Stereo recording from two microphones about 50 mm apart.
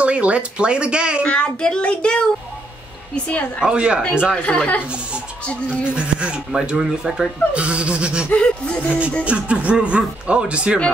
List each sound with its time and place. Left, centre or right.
0.0 s speech: right
1.2 s a child's voice: centre
3.3 s a child's voice: left
3.6 s speech: centre
4.4 s a child's voice: left
5.7 s speech: right
6.8 s speech: centre
7.5 s speech: right
8.3 s a child's voice: left
9.2 s speech: right